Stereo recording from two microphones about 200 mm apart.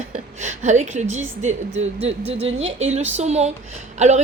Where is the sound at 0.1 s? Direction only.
35° right (ahead or behind).